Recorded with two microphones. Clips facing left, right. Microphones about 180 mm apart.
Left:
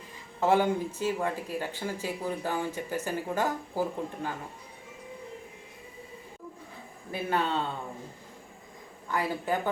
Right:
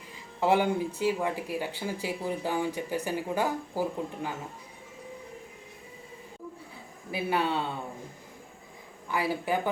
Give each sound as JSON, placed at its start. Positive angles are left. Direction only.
{"t": 0.3, "sound": "speech", "side_deg": -15}
{"t": 7.1, "sound": "speech", "side_deg": -10}
{"t": 9.0, "sound": "speech", "side_deg": -10}